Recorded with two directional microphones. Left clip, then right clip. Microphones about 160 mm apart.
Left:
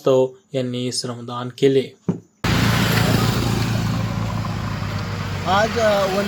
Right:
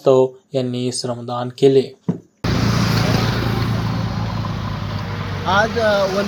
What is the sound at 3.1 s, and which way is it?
Vehicle, 65° left (ahead or behind).